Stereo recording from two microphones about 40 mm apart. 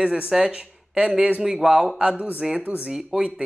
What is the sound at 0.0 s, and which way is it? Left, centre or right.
Speech, right.